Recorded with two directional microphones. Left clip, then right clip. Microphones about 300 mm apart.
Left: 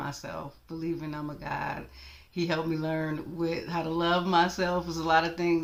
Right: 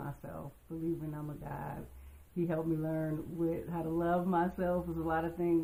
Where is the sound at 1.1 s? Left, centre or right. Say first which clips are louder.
Left 9 dB; centre.